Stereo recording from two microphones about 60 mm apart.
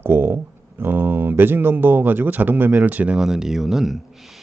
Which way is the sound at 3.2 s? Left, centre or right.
Centre.